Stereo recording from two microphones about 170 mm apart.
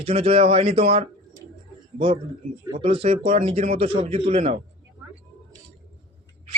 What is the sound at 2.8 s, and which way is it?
Speech, 35° right (ahead or behind).